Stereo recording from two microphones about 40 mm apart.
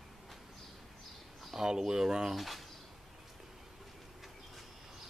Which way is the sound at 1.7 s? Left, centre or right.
Centre.